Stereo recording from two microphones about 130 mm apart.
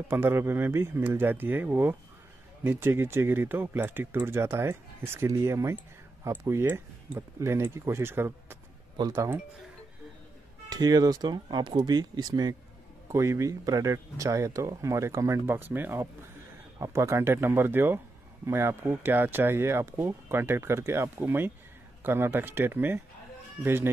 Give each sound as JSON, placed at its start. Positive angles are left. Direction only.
{"t": 0.1, "sound": "speech", "side_deg": -20}
{"t": 10.7, "sound": "speech", "side_deg": -30}